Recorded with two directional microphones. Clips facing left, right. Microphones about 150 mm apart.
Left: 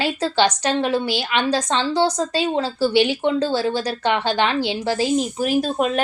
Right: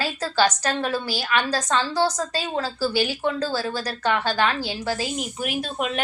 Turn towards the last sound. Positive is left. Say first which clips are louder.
# left 7 dB
turn(degrees=35)  # may be behind; listen again after turning